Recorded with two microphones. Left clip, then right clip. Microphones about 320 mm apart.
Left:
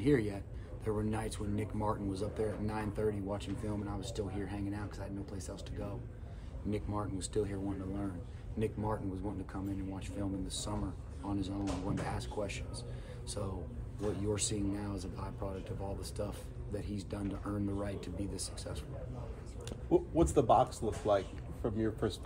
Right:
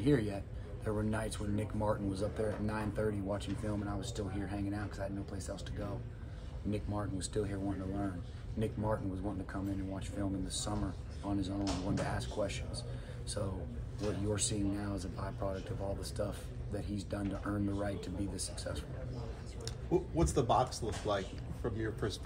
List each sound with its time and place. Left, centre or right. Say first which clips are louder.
0.0 s speech: left 1 dB; centre
19.9 s speech: left 3 dB; left